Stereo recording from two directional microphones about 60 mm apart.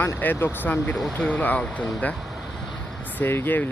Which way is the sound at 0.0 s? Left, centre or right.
Left.